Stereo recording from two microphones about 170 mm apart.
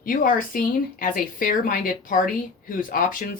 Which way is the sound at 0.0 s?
55° left (ahead or behind).